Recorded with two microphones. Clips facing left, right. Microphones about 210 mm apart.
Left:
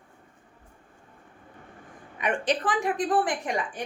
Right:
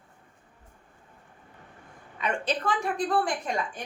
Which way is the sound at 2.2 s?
15° left (ahead or behind).